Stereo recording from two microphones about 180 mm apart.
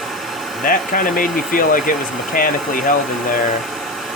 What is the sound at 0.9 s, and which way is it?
Speech, 50° left (ahead or behind).